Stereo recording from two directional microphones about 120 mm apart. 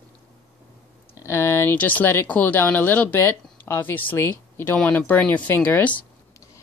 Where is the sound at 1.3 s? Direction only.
20° left (ahead or behind).